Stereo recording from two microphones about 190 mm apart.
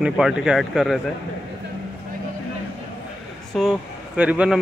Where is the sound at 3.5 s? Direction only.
Centre (ahead or behind).